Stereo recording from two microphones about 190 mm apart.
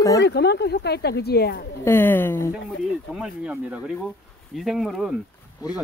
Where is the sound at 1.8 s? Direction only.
10° left (ahead or behind).